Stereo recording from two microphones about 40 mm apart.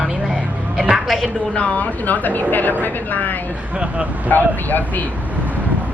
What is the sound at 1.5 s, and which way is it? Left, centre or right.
Speech, left.